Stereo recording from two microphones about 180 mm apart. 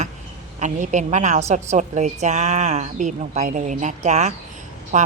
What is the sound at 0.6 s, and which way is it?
A woman's voice, 45° right (ahead or behind).